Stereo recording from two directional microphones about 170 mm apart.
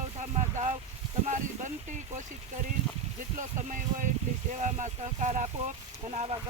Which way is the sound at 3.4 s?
50° right (ahead or behind).